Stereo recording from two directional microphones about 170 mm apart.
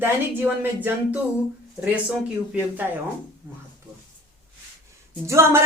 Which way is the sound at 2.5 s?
10° right (ahead or behind).